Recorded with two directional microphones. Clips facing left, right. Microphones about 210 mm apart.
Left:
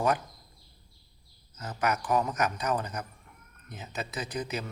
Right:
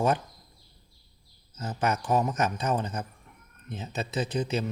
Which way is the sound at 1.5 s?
30° right (ahead or behind).